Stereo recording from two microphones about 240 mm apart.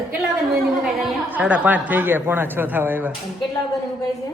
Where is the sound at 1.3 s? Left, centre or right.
Centre.